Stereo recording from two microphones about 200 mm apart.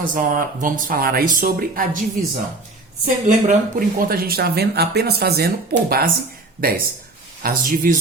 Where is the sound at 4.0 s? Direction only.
45° right (ahead or behind).